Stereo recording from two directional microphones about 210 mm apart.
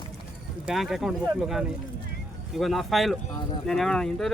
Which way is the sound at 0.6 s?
Centre (ahead or behind).